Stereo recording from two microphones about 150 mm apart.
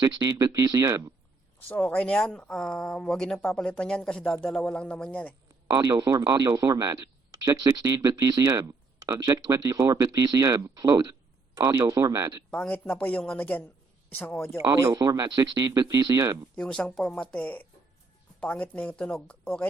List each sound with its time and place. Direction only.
0.0 s speech: 25° right (ahead or behind)
1.6 s speech: 10° left (ahead or behind)
5.7 s speech: 25° right (ahead or behind)
11.6 s speech: 15° right (ahead or behind)
12.5 s speech: 10° left (ahead or behind)
14.6 s speech: 25° right (ahead or behind)
16.6 s speech: 5° left (ahead or behind)